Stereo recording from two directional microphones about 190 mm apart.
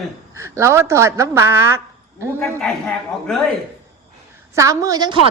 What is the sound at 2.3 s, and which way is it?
A man's voice, 5° left (ahead or behind).